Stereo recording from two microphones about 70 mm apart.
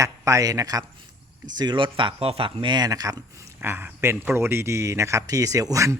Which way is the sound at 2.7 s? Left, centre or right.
Right.